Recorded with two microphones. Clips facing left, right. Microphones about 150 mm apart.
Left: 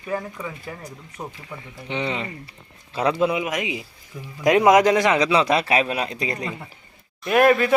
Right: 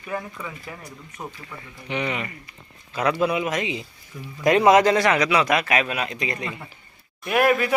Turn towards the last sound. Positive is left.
turn(degrees=-10)  # may be behind; listen again after turning